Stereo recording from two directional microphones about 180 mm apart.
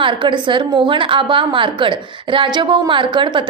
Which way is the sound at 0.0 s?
25° right (ahead or behind).